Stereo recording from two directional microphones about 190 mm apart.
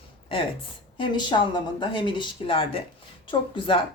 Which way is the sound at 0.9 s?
25° left (ahead or behind).